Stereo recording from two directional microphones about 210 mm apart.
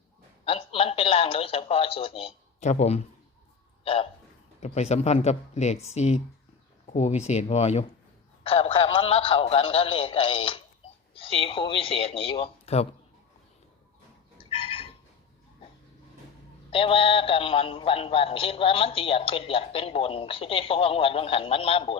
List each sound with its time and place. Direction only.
0.4 s speech: 25° left (ahead or behind)
4.6 s speech: 30° left (ahead or behind)
14.3 s chicken: 25° left (ahead or behind)
16.7 s speech: 25° left (ahead or behind)